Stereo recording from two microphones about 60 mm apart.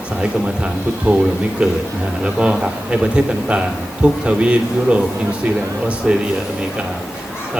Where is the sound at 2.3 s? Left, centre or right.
Centre.